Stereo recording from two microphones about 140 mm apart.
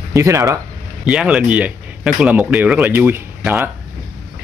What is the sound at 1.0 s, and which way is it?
Speech, 5° right (ahead or behind).